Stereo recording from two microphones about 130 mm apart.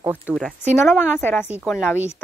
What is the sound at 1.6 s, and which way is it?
Speech, 5° right (ahead or behind).